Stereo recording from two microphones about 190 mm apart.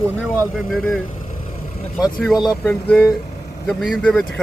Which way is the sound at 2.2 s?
Centre (ahead or behind).